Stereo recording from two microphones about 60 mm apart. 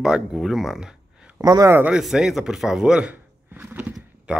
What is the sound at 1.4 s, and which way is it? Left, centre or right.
Speech, right.